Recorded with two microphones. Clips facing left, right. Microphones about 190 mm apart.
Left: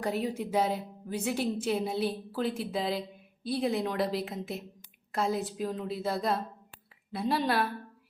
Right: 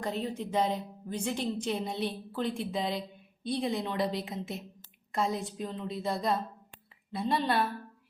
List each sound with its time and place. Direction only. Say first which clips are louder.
0.0 s a woman's voice: left 3 dB; 10° left (ahead or behind)